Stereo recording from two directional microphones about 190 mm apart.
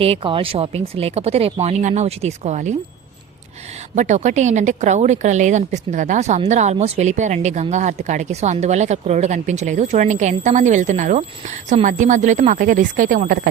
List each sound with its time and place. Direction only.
0.0 s a woman's voice: 30° right (ahead or behind)
3.9 s a woman's voice: 40° right (ahead or behind)